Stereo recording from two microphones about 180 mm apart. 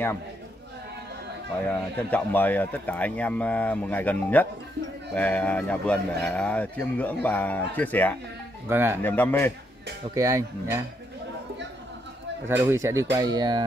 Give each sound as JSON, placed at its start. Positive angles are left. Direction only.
{"t": 1.7, "sound": "speech", "side_deg": 10}
{"t": 8.6, "sound": "speech", "side_deg": -10}
{"t": 9.0, "sound": "speech", "side_deg": 10}
{"t": 10.1, "sound": "speech", "side_deg": -20}
{"t": 12.4, "sound": "speech", "side_deg": -15}